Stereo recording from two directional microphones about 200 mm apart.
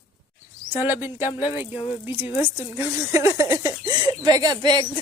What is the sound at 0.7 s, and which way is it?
Speech, 10° right (ahead or behind).